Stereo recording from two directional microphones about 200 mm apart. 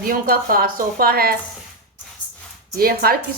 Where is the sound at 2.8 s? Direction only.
50° right (ahead or behind).